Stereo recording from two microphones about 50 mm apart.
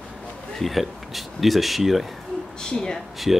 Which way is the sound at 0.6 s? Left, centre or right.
Centre.